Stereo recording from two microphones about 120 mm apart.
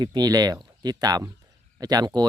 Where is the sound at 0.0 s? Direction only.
35° right (ahead or behind).